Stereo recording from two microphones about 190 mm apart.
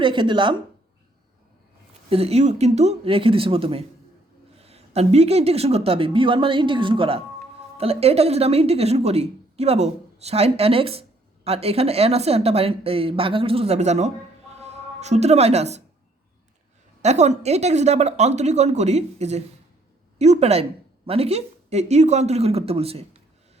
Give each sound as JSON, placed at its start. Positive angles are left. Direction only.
{"t": 0.0, "sound": "a woman's voice", "side_deg": -25}
{"t": 2.0, "sound": "a woman's voice", "side_deg": -30}
{"t": 17.0, "sound": "a woman's voice", "side_deg": -35}